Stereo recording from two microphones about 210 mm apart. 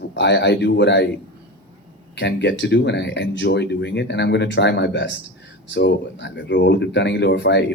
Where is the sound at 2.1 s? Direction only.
55° left (ahead or behind).